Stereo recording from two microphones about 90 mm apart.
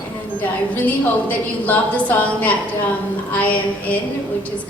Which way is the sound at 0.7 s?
20° left (ahead or behind).